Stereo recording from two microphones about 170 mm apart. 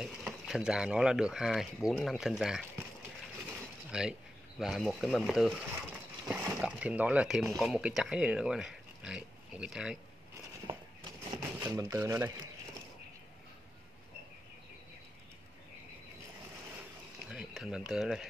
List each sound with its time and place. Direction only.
0.0 s speech: 5° right (ahead or behind)
3.4 s mechanisms: 5° right (ahead or behind)
4.6 s speech: centre (ahead or behind)
10.7 s a sound: 30° right (ahead or behind)
11.2 s speech: 20° right (ahead or behind)
17.3 s speech: 5° right (ahead or behind)